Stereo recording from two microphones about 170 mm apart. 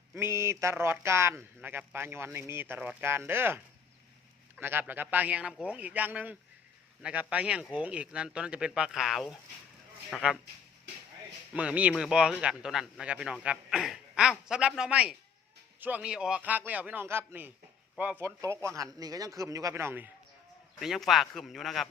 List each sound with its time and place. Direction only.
0.1 s speech: 15° right (ahead or behind)
11.5 s speech: 10° right (ahead or behind)
20.7 s speech: centre (ahead or behind)